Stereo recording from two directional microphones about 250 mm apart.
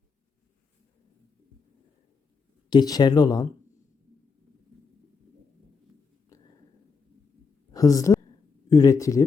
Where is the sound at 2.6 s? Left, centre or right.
Centre.